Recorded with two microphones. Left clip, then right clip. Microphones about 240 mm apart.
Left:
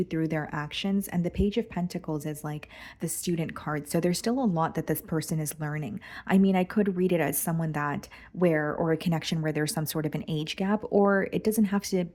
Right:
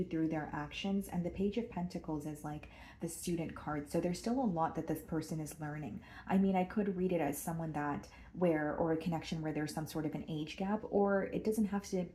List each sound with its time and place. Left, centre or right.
0.1 s speech: left